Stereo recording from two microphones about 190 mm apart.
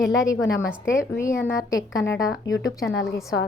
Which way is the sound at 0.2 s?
15° left (ahead or behind).